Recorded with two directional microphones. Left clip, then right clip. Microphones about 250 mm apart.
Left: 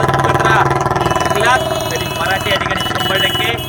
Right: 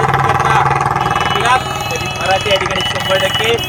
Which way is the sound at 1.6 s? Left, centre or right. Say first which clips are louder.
Left 2 dB; centre.